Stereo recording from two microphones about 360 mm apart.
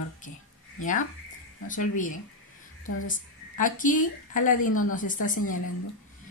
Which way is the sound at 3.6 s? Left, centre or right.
Left.